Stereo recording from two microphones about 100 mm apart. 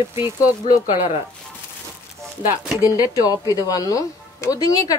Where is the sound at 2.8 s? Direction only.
35° left (ahead or behind).